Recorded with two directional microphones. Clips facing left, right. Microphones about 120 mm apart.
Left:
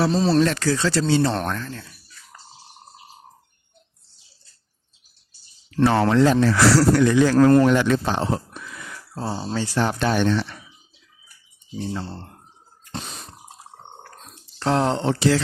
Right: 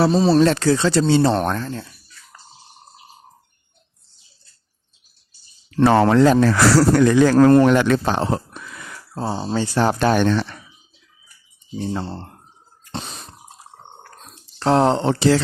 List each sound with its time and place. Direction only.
0.1 s speech: 5° right (ahead or behind)
0.3 s speech: 25° right (ahead or behind)
5.8 s speech: 50° right (ahead or behind)
7.6 s speech: 60° right (ahead or behind)
9.1 s speech: 25° right (ahead or behind)
9.7 s speech: 40° right (ahead or behind)
11.9 s speech: 55° right (ahead or behind)
14.6 s speech: 35° right (ahead or behind)